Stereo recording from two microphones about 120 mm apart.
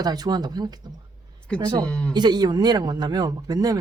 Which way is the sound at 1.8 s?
10° left (ahead or behind).